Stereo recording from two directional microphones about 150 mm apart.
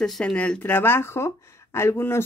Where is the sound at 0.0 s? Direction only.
5° left (ahead or behind).